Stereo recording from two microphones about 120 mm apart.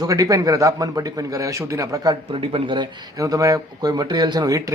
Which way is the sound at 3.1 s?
30° right (ahead or behind).